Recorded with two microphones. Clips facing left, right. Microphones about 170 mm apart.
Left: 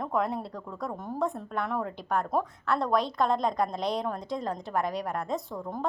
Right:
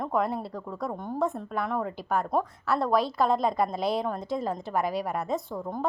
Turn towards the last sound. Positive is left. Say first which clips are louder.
# right 2 dB
turn(degrees=0)  # may be behind; listen again after turning